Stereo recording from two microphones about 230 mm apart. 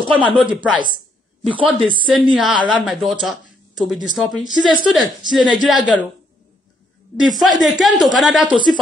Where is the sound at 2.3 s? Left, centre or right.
Centre.